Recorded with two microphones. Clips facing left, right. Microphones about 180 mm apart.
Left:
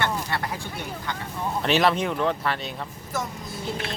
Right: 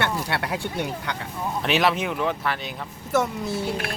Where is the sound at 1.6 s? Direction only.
Centre (ahead or behind).